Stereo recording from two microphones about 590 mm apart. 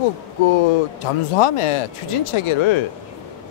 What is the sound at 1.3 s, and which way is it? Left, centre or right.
Speech, left.